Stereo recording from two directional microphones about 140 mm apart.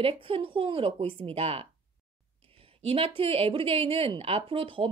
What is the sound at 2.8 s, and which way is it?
A woman's voice, 45° right (ahead or behind).